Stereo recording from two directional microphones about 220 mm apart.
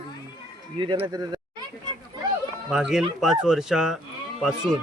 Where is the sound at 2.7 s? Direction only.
Centre (ahead or behind).